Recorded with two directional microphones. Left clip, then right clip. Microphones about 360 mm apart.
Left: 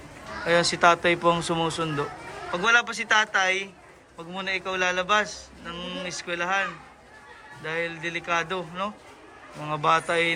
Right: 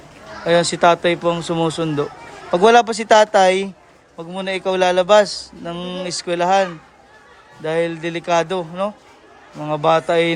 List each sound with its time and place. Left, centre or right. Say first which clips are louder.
0.4 s speech: right 6 dB; centre